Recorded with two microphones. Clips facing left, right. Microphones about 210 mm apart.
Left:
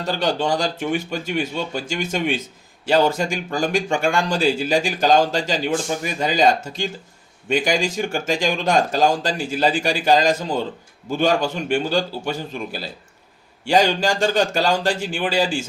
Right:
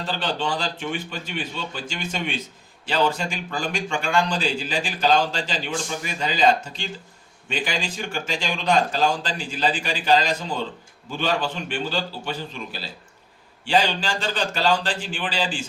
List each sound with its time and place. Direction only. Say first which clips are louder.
0.0 s speech: left 5 dB; 45° left (ahead or behind)